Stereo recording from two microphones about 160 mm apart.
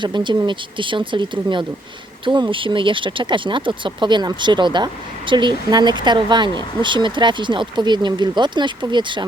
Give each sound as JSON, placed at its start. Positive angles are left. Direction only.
{"t": 0.0, "sound": "speech", "side_deg": -30}